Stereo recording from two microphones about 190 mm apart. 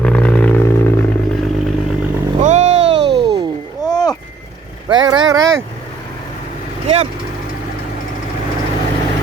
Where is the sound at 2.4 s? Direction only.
40° right (ahead or behind).